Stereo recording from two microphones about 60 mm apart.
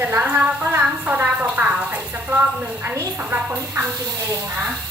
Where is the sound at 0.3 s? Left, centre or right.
Right.